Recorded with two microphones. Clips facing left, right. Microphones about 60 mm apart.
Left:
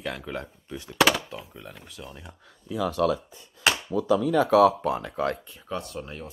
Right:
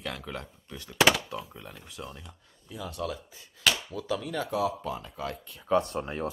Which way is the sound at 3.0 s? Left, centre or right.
Left.